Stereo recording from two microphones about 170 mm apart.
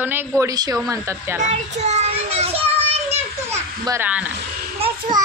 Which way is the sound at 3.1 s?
15° right (ahead or behind).